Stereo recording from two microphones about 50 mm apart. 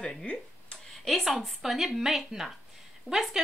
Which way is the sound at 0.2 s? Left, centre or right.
Left.